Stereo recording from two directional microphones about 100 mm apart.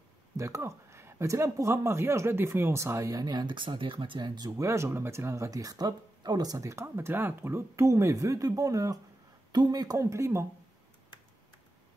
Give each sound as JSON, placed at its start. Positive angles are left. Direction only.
{"t": 0.4, "sound": "speech", "side_deg": -30}
{"t": 4.5, "sound": "speech", "side_deg": -30}